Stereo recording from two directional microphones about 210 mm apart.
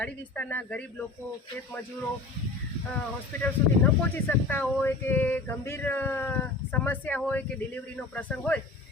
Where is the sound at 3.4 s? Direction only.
10° left (ahead or behind).